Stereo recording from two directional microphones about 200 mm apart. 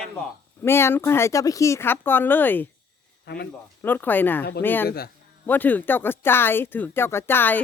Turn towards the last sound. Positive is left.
turn(degrees=10)  # may be behind; listen again after turning